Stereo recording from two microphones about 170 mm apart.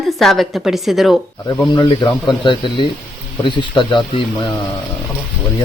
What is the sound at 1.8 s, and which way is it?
Speech, 25° left (ahead or behind).